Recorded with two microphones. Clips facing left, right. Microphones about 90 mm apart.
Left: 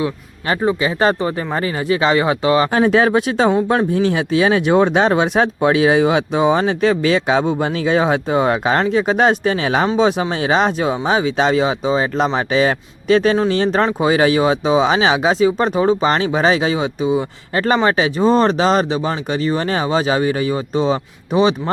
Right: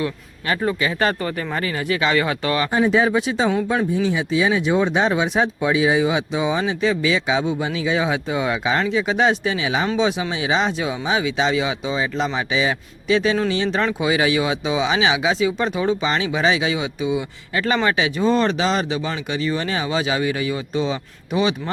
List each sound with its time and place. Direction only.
0.4 s speech: 30° left (ahead or behind)
2.7 s speech: 65° left (ahead or behind); by 21.5 s 35° left (ahead or behind)